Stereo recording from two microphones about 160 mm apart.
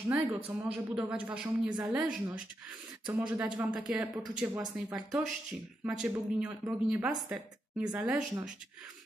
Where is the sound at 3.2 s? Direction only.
10° right (ahead or behind).